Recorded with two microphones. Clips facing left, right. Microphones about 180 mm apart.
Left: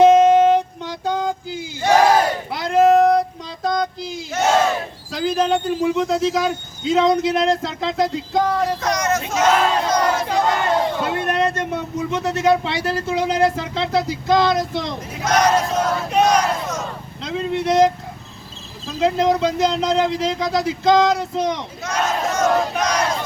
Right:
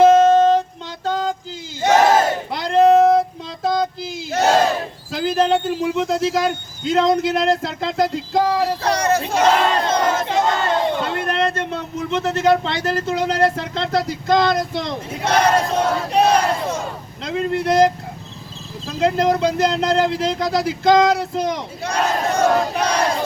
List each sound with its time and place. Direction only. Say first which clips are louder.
0.0 s a sound: even; 15° left (ahead or behind)
1.8 s battle cry: even; 20° right (ahead or behind)
2.5 s child singing: right 1 dB; 5° left (ahead or behind)
4.3 s battle cry: right 2 dB; 35° right (ahead or behind)
5.1 s speech: right 1 dB; centre (ahead or behind)
8.8 s battle cry: right 2 dB; 30° right (ahead or behind)
11.0 s speech: left 1 dB; 15° left (ahead or behind); by 14.9 s centre (ahead or behind)
15.2 s battle cry: even; 30° right (ahead or behind)
17.2 s speech: right 1 dB; centre (ahead or behind)
21.8 s battle cry: right 1 dB; 30° right (ahead or behind)